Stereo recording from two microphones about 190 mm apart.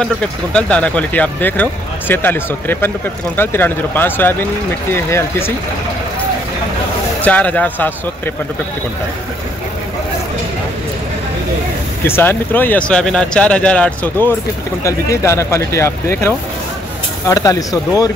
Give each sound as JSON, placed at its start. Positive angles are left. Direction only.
{"t": 0.0, "sound": "speech", "side_deg": 5}
{"t": 7.2, "sound": "speech", "side_deg": 10}
{"t": 12.0, "sound": "speech", "side_deg": 10}